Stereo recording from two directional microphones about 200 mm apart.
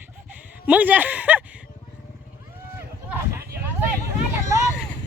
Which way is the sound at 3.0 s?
10° right (ahead or behind).